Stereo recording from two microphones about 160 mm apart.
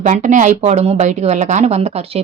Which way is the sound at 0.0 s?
50° right (ahead or behind).